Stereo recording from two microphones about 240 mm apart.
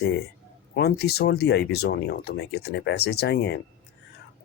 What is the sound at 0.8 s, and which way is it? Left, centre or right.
Speech, left.